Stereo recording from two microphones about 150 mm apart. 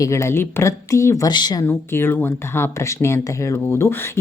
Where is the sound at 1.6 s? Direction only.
15° left (ahead or behind).